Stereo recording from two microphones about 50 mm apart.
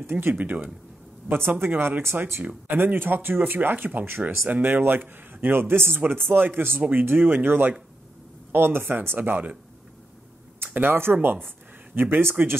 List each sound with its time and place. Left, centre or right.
0.1 s speech: right
4.5 s speech: right
5.5 s speech: right
10.6 s speech: right